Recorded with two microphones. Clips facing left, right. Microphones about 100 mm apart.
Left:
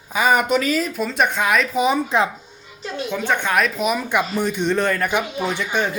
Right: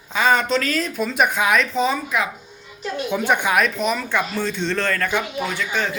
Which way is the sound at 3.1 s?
15° right (ahead or behind).